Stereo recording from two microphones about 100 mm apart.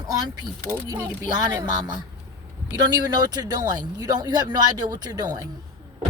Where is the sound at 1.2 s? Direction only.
40° right (ahead or behind).